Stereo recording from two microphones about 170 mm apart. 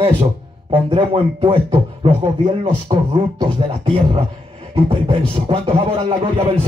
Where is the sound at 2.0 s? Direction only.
30° right (ahead or behind).